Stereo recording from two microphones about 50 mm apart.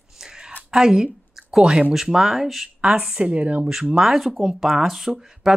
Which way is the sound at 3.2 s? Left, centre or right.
Right.